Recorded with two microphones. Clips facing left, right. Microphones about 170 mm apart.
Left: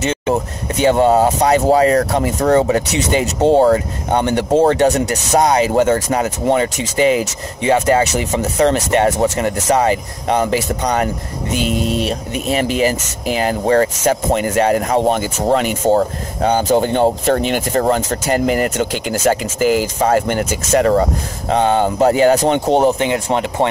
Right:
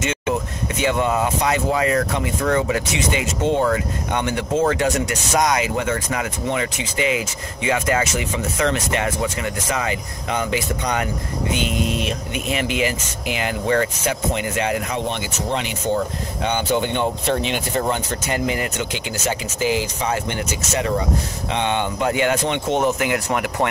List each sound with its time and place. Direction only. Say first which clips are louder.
0.0 s speech: left 5 dB; 35° left (ahead or behind)
11.6 s speech: left 8 dB; centre (ahead or behind)
12.4 s speech: left 6 dB; 35° left (ahead or behind)